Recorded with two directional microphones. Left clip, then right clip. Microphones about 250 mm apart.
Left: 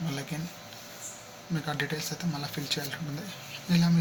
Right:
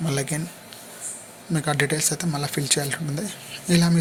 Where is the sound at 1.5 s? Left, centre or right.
Right.